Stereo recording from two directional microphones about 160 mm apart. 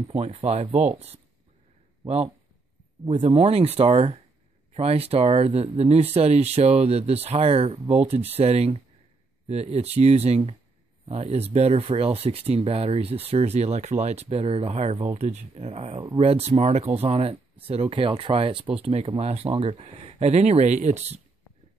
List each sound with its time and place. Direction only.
0.1 s speech: 40° right (ahead or behind)